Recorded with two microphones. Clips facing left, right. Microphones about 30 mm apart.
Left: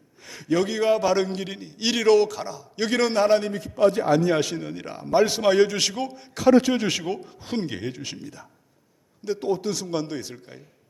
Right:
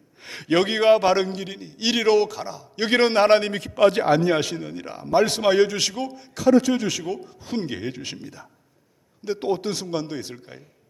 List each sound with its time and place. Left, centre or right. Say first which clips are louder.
0.2 s a man's voice: right 3 dB; right
1.3 s a man's voice: even; centre
2.8 s a man's voice: right 3 dB; right
3.5 s a man's voice: right 2 dB; right
4.0 s a man's voice: right 1 dB; right
4.4 s a man's voice: even; centre
6.6 s a man's voice: even; centre
7.5 s a man's voice: right 1 dB; centre
9.4 s a man's voice: right 1 dB; right
9.8 s a man's voice: even; centre